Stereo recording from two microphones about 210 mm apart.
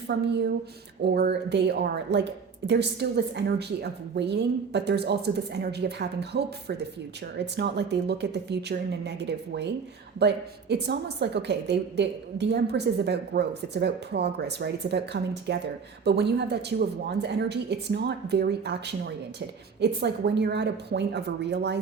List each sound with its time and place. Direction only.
0.1 s a woman's voice: 55° right (ahead or behind)